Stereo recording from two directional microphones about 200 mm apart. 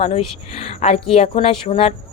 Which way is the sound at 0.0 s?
30° left (ahead or behind).